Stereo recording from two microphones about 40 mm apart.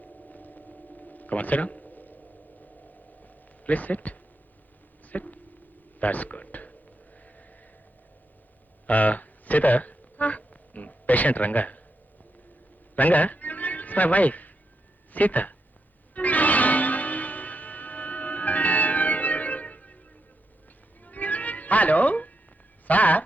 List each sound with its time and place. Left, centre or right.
0.0 s a sound: left
3.2 s a sound: left
8.9 s music: left
13.0 s music: left
15.1 s speech: left
16.1 s music: left
21.0 s music: left
22.9 s speech: left